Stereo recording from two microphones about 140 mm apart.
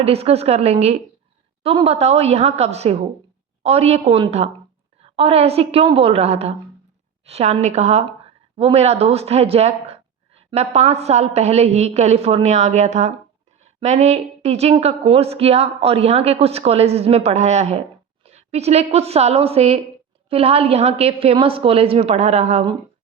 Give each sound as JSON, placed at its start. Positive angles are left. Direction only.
{"t": 0.0, "sound": "speech", "side_deg": -45}